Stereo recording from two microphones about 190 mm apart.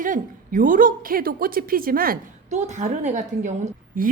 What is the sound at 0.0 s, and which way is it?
A woman's voice, 45° right (ahead or behind).